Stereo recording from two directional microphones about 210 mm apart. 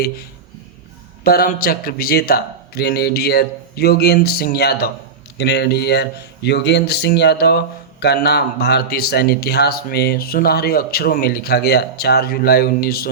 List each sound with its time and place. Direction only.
1.2 s speech: 45° left (ahead or behind)